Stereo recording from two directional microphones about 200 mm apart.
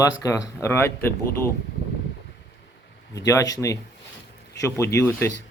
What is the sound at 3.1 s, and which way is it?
Speech, 15° left (ahead or behind).